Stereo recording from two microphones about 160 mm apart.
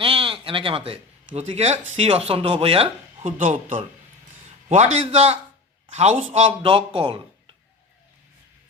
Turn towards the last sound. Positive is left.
turn(degrees=-35)  # may be behind; listen again after turning